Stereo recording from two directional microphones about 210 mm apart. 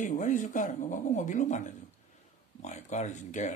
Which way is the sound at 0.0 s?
35° left (ahead or behind).